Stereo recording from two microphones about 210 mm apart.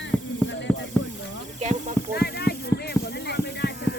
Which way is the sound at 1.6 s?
35° right (ahead or behind).